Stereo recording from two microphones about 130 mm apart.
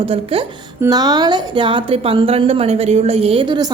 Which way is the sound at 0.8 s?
30° right (ahead or behind).